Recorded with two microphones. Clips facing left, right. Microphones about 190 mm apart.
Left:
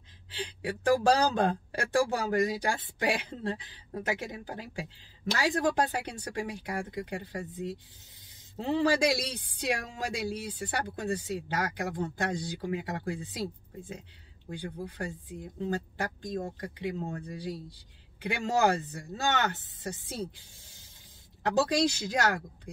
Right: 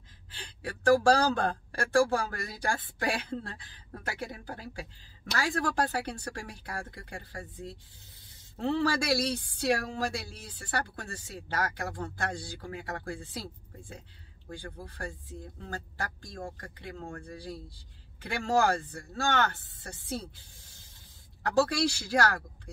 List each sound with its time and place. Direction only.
1.1 s speech: 20° left (ahead or behind)
14.5 s speech: 15° left (ahead or behind)
21.4 s speech: 20° left (ahead or behind)